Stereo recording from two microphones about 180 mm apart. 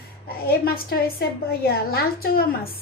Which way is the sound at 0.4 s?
55° left (ahead or behind).